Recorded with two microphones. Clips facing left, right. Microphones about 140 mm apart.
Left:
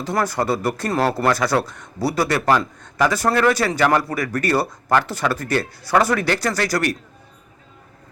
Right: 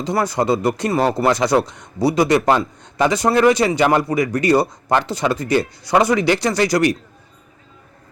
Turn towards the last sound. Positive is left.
turn(degrees=-15)  # may be behind; listen again after turning